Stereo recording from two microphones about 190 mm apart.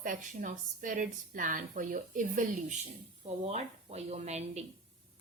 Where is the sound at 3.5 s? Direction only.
35° right (ahead or behind).